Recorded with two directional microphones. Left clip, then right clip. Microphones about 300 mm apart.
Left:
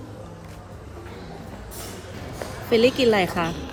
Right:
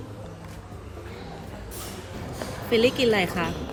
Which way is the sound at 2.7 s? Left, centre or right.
Centre.